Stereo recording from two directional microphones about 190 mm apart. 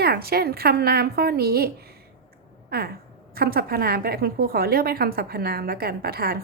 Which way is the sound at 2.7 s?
55° right (ahead or behind).